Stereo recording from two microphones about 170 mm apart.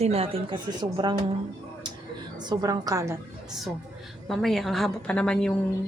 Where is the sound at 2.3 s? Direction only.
25° right (ahead or behind).